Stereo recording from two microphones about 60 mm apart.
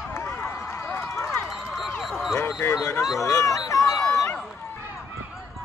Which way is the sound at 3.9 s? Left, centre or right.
Centre.